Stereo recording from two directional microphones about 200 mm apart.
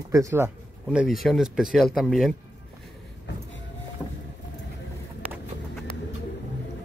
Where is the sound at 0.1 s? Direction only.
15° right (ahead or behind).